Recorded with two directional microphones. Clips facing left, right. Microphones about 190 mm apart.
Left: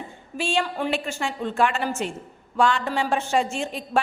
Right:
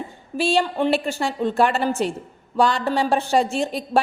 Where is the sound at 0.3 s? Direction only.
35° right (ahead or behind).